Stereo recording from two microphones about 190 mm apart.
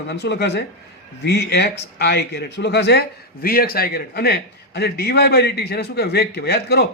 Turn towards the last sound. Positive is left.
turn(degrees=55)  # may be behind; listen again after turning